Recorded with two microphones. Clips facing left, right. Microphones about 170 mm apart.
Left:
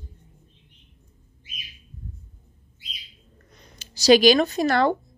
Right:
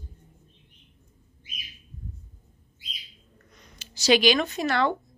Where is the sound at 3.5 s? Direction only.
35° left (ahead or behind).